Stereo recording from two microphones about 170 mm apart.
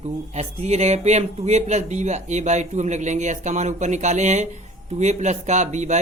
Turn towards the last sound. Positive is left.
turn(degrees=-45)  # may be behind; listen again after turning